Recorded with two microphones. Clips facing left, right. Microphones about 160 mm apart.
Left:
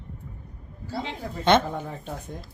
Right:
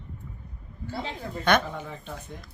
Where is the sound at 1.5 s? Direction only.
25° left (ahead or behind).